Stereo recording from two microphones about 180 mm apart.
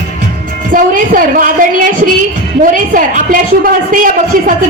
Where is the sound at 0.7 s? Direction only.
50° right (ahead or behind).